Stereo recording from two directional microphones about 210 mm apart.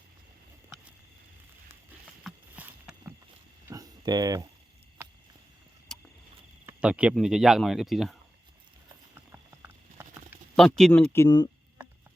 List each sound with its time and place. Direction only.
2.2 s clip-clop: 5° right (ahead or behind)
3.7 s a sound: 15° right (ahead or behind)
5.9 s a sound: centre (ahead or behind)
6.7 s speech: 5° right (ahead or behind)
9.1 s clip-clop: 10° right (ahead or behind)
10.5 s speech: centre (ahead or behind)